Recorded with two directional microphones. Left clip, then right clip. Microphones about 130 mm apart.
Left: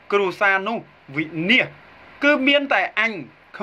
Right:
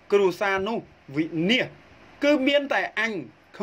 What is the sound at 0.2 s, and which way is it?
A man's voice, 60° right (ahead or behind).